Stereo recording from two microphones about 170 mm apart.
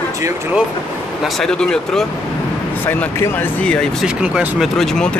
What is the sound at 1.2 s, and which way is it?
Speech, centre (ahead or behind).